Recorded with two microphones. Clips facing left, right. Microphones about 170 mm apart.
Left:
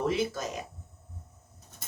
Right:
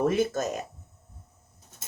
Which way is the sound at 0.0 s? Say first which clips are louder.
Right 4 dB; 50° right (ahead or behind).